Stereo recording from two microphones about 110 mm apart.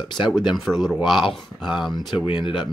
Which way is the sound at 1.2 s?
45° left (ahead or behind).